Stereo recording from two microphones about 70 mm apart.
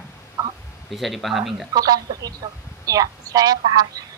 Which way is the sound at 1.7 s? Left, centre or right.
Right.